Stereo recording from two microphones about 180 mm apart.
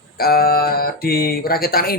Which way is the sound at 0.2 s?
55° left (ahead or behind).